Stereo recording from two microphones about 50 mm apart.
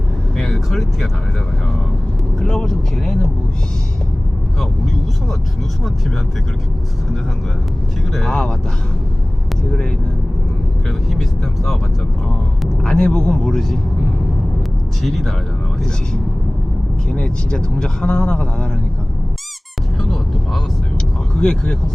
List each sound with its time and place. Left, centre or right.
0.3 s vehicle: centre
2.4 s speech: centre
8.1 s speech: centre
10.8 s speech: centre
12.8 s speech: centre
15.0 s speech: centre
17.1 s speech: centre
20.0 s a sound: centre
21.3 s speech: centre